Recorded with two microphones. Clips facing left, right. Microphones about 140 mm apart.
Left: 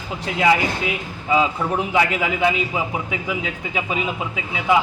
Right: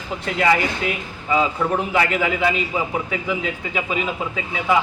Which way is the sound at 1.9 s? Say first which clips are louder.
Even; 10° left (ahead or behind).